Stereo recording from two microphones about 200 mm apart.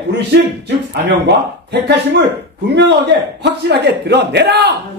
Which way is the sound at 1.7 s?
55° right (ahead or behind).